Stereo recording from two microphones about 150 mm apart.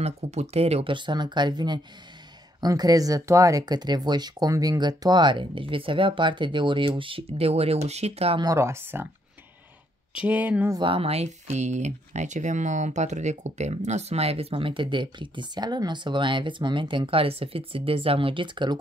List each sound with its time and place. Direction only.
0.0 s speech: 45° right (ahead or behind)
8.4 s speech: 20° right (ahead or behind)
10.1 s speech: 10° right (ahead or behind)
10.7 s speech: 35° right (ahead or behind)